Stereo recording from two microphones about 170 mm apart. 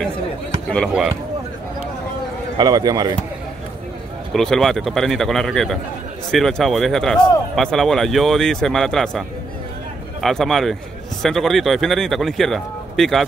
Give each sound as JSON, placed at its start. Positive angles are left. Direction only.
{"t": 2.5, "sound": "speech", "side_deg": -25}
{"t": 4.3, "sound": "speech", "side_deg": 5}
{"t": 10.2, "sound": "speech", "side_deg": 0}